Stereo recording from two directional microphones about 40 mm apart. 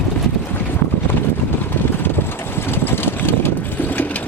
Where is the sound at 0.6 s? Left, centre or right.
Left.